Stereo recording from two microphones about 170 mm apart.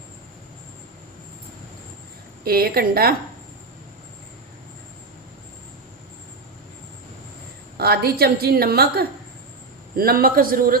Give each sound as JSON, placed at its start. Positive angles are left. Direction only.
{"t": 2.4, "sound": "a woman's voice", "side_deg": -65}
{"t": 7.8, "sound": "a woman's voice", "side_deg": -65}